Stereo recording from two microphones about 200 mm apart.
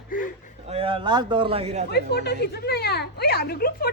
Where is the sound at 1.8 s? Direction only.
55° left (ahead or behind).